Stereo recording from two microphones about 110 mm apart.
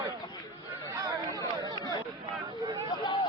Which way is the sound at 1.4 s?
35° left (ahead or behind).